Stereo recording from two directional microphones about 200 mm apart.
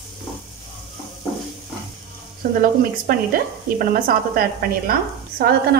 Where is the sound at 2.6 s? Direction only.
45° right (ahead or behind).